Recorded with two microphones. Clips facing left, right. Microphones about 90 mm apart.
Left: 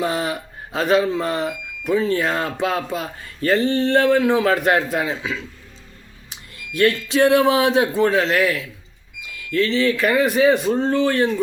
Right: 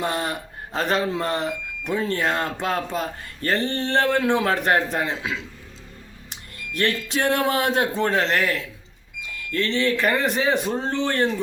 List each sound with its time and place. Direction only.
0.0 s speech: 5° left (ahead or behind)
6.8 s speech: 5° left (ahead or behind)
9.6 s speech: 5° left (ahead or behind)
10.8 s speech: 35° right (ahead or behind)